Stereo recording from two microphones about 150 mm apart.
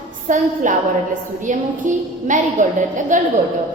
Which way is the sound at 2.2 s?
60° right (ahead or behind).